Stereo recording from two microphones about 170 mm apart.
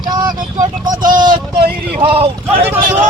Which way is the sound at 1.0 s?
25° right (ahead or behind).